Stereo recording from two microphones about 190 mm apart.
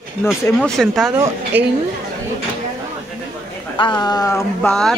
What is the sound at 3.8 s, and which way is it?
Speech, 25° left (ahead or behind).